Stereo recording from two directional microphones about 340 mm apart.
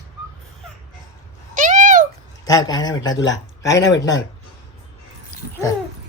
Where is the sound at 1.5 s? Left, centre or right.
Right.